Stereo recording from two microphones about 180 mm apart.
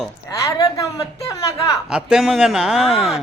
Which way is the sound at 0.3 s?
20° left (ahead or behind).